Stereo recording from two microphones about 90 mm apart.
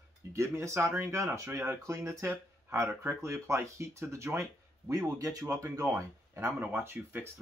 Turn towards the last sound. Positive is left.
turn(degrees=-25)  # may be behind; listen again after turning